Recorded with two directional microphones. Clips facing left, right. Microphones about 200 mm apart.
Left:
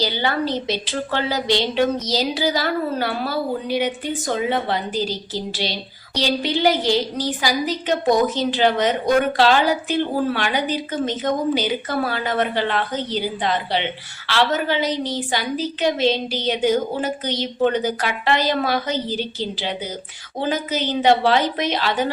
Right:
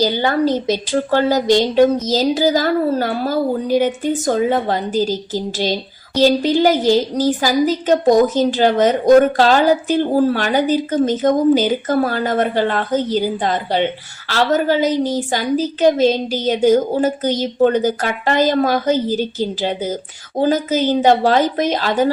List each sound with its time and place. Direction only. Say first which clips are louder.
0.0 s a woman's voice: right 6 dB; 45° right (ahead or behind)